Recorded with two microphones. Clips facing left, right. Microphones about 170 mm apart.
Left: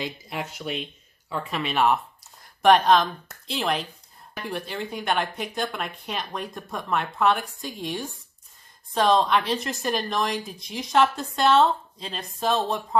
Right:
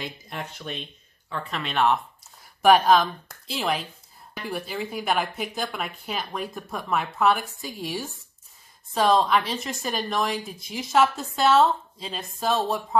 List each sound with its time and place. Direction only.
0.0 s speech: 5° left (ahead or behind)
2.6 s a woman's voice: 5° right (ahead or behind)